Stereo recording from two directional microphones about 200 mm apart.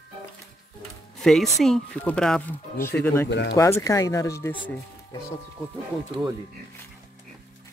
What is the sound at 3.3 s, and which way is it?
Speech, 60° left (ahead or behind).